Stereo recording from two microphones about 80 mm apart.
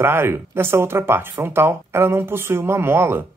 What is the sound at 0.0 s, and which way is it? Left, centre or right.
Speech, right.